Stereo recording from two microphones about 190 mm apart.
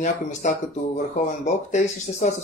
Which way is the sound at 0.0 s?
40° left (ahead or behind).